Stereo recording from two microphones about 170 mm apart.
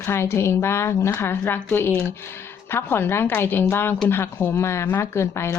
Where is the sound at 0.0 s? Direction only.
15° left (ahead or behind).